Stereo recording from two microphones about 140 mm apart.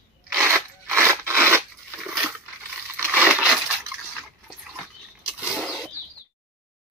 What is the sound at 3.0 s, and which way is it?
Crushing, 10° right (ahead or behind).